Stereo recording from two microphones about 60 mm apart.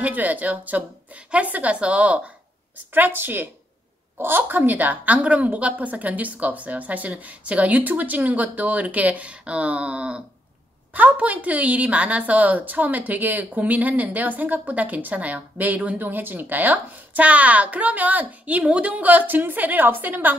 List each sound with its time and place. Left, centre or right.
0.0 s a woman's voice: right
2.9 s a woman's voice: right